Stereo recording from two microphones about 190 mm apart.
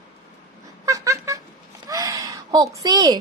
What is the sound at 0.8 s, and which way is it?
Cat, 15° right (ahead or behind).